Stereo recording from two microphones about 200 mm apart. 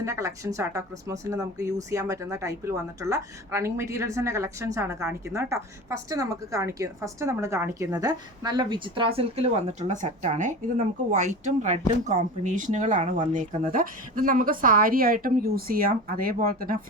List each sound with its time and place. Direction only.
0.0 s speech: 15° right (ahead or behind); by 16.7 s 45° right (ahead or behind)